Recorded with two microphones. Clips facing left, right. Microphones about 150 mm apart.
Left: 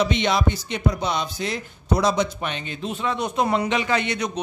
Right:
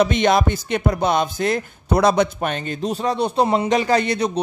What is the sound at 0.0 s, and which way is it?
Music, 50° right (ahead or behind).